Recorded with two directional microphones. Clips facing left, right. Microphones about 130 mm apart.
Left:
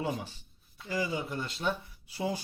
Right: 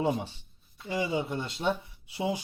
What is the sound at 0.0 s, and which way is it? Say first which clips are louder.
Speech: right 5 dB; 30° right (ahead or behind).